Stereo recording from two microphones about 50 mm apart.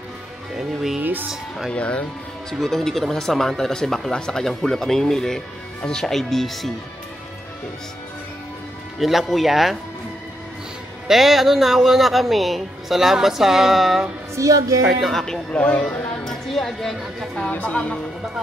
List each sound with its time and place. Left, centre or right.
0.6 s speech: centre
1.7 s a woman's voice: left
2.6 s speech: centre
9.0 s speech: centre
11.1 s speech: centre
14.3 s speech: right
15.0 s speech: centre
15.5 s a woman's voice: left
16.3 s a woman's voice: centre
17.5 s a woman's voice: left